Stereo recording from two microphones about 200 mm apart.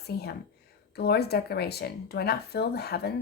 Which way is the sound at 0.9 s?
55° left (ahead or behind).